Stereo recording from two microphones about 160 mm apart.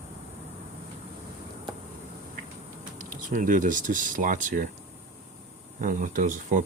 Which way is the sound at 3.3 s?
55° right (ahead or behind).